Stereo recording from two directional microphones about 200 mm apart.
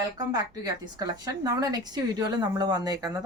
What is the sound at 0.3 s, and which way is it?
A woman's voice, 20° right (ahead or behind).